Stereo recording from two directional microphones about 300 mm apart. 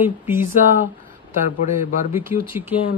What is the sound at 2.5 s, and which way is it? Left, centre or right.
Speech, centre.